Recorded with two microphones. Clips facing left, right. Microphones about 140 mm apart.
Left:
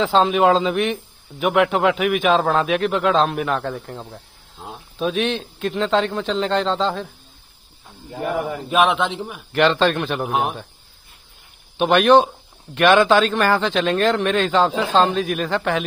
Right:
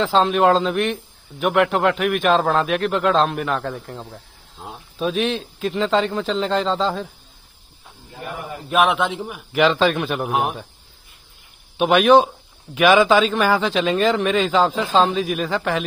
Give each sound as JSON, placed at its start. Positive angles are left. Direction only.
{"t": 0.0, "sound": "a man's voice", "side_deg": 0}
{"t": 8.2, "sound": "speech", "side_deg": 90}
{"t": 8.6, "sound": "a man's voice", "side_deg": 0}
{"t": 11.7, "sound": "a man's voice", "side_deg": 0}